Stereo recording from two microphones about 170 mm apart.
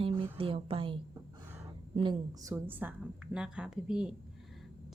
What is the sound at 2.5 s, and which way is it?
A woman's voice, 10° right (ahead or behind).